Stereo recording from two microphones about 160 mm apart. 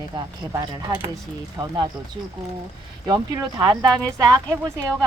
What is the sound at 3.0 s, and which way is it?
Speech, 25° right (ahead or behind).